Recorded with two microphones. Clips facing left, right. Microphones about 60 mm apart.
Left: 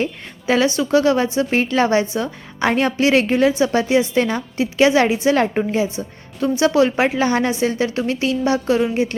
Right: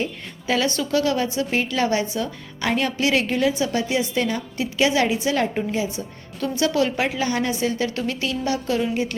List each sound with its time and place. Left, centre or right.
0.0 s a woman's voice: left
5.3 s a woman's voice: left